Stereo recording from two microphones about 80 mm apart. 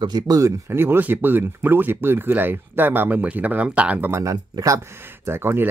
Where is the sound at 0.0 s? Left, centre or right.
Right.